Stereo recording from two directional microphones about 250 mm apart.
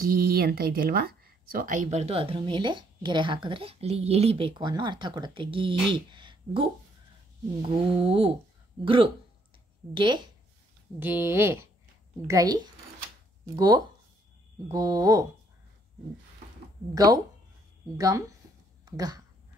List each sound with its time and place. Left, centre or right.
0.0 s speech: right; by 6.7 s centre
7.7 s speech: right
16.9 s speech: centre